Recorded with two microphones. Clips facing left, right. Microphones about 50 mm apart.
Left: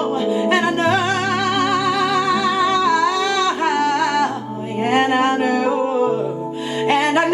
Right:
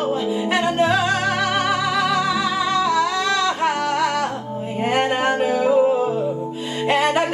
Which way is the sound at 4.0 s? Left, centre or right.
Left.